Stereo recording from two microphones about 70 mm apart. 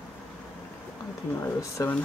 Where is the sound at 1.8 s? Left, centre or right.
Left.